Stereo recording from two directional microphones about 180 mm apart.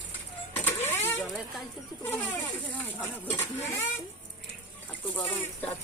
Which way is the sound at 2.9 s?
10° left (ahead or behind).